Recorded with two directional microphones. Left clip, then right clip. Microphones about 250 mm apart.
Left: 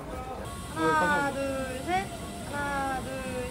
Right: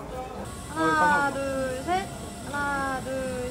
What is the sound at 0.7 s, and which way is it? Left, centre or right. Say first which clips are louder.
Speech: right 3 dB; right.